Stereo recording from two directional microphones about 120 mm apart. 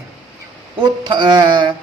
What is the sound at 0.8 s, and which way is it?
Mantra, 40° right (ahead or behind).